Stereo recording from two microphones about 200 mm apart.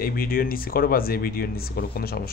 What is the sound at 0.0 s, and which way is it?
Speech, 50° left (ahead or behind).